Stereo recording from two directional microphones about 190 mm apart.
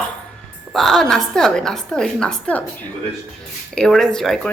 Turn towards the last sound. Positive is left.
turn(degrees=0)  # may be behind; listen again after turning